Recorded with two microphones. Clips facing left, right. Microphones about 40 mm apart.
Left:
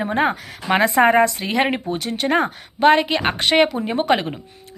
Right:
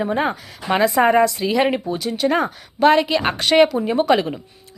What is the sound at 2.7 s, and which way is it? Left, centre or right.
A woman's voice, left.